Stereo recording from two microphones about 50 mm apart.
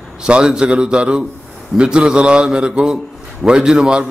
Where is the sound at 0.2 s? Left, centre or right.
Centre.